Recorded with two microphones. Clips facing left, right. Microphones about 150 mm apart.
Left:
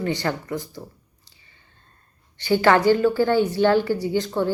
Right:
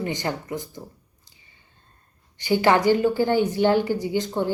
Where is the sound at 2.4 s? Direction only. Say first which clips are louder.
Left 2 dB; 15° right (ahead or behind).